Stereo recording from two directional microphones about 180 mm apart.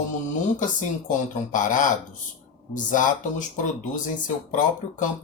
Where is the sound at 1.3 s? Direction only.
45° left (ahead or behind).